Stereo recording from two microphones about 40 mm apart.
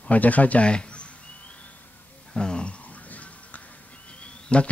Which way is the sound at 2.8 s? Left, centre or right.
Left.